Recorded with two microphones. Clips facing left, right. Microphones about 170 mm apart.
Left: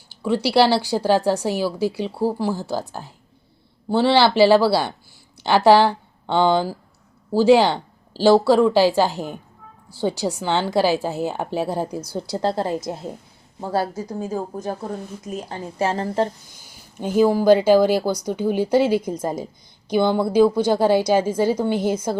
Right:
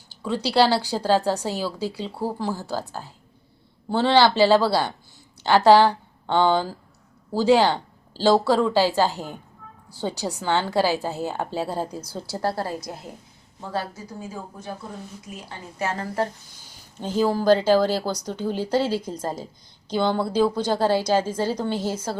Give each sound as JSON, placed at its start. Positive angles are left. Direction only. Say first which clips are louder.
{"t": 0.2, "sound": "a woman's voice", "louder": "left 3 dB", "side_deg": 10}
{"t": 13.6, "sound": "speech", "louder": "left 7 dB", "side_deg": 35}
{"t": 15.9, "sound": "a woman's voice", "louder": "left 3 dB", "side_deg": 25}
{"t": 16.6, "sound": "a woman's voice", "louder": "left 4 dB", "side_deg": 10}